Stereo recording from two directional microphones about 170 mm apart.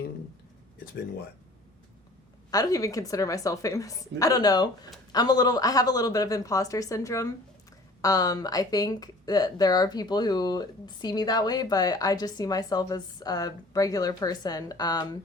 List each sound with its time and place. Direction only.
2.5 s speech: 20° left (ahead or behind)